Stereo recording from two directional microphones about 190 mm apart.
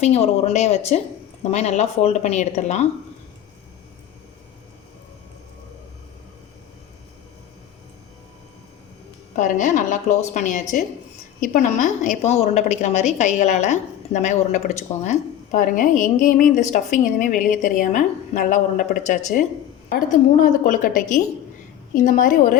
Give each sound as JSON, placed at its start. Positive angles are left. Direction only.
{"t": 0.0, "sound": "a woman's voice", "side_deg": 35}
{"t": 9.3, "sound": "a woman's voice", "side_deg": 40}